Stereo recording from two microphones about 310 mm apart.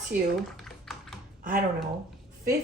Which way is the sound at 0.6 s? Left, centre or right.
Centre.